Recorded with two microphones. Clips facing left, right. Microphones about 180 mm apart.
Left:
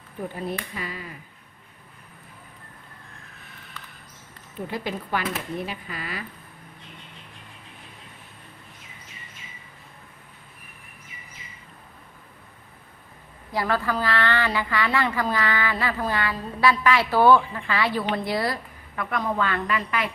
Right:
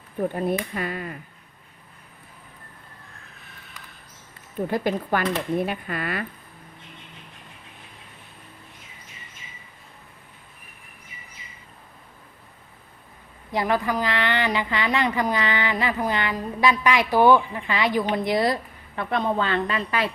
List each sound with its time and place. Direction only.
0.3 s speech: 55° right (ahead or behind)
4.7 s speech: 50° right (ahead or behind)
13.5 s a woman's voice: 20° right (ahead or behind)